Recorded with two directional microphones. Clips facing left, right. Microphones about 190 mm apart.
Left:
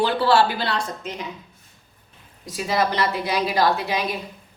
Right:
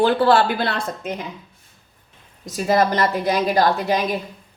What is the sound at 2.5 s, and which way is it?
A woman's voice, 45° right (ahead or behind).